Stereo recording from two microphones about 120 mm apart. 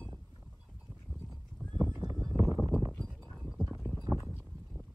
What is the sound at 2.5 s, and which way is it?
Clip-clop, 30° right (ahead or behind).